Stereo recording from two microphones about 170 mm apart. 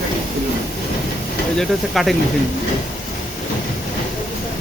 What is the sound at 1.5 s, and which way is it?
Speech, centre (ahead or behind).